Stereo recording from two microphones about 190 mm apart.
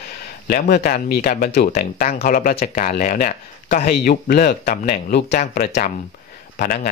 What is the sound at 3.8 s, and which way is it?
Speech, 50° left (ahead or behind).